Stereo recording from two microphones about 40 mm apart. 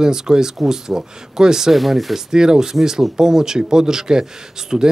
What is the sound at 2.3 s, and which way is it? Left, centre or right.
Speech, centre.